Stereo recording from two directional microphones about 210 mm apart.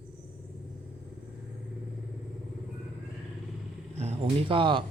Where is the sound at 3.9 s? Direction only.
30° right (ahead or behind).